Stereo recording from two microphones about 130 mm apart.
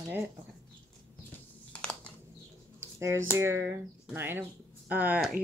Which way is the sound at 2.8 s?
25° right (ahead or behind).